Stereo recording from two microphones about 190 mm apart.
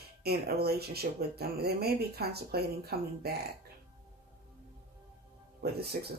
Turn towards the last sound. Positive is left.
turn(degrees=-55)  # may be behind; listen again after turning